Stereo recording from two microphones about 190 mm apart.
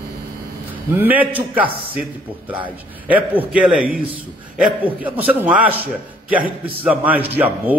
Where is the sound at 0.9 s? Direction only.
10° right (ahead or behind).